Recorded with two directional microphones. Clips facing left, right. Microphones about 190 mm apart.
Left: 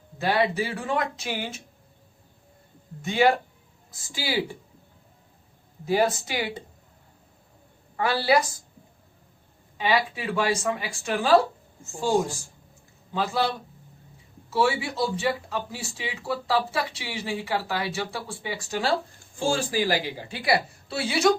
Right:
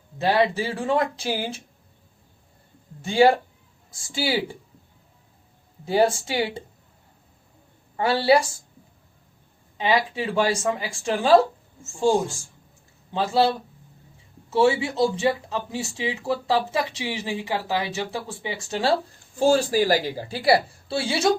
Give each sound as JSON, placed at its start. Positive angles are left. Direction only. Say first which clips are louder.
{"t": 0.2, "sound": "a woman's voice", "louder": "right 3 dB", "side_deg": -25}
{"t": 3.0, "sound": "a woman's voice", "louder": "right 4 dB", "side_deg": -30}
{"t": 5.8, "sound": "speech", "louder": "right 3 dB", "side_deg": -30}
{"t": 7.9, "sound": "speech", "louder": "right 4 dB", "side_deg": -30}
{"t": 9.7, "sound": "speech", "louder": "right 2 dB", "side_deg": -20}
{"t": 13.1, "sound": "speech", "louder": "right 5 dB", "side_deg": -30}
{"t": 14.5, "sound": "speech", "louder": "right 4 dB", "side_deg": -20}
{"t": 19.4, "sound": "a woman's voice", "louder": "right 6 dB", "side_deg": -40}